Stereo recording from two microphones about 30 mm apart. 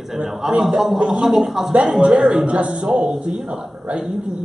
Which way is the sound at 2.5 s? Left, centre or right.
Right.